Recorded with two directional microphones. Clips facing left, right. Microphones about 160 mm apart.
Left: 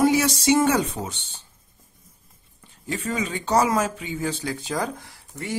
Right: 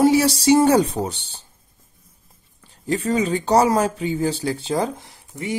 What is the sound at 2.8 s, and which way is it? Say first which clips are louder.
Speech: right 7 dB; 35° right (ahead or behind).